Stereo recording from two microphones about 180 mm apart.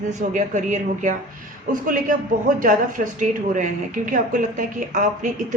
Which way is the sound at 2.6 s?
45° right (ahead or behind).